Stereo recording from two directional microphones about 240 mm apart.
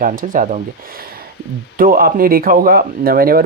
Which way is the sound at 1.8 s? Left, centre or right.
Right.